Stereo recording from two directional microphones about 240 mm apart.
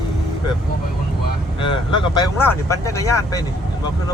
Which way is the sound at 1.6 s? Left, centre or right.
Left.